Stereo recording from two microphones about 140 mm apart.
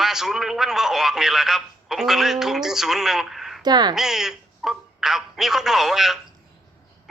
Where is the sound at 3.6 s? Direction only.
30° right (ahead or behind).